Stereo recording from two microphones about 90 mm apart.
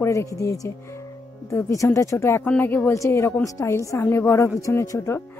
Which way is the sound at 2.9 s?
30° left (ahead or behind).